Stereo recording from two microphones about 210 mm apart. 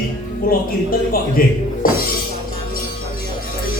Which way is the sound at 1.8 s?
40° left (ahead or behind).